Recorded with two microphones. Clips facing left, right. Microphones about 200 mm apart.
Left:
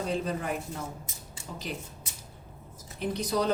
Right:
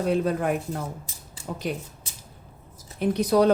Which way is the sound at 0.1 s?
60° right (ahead or behind).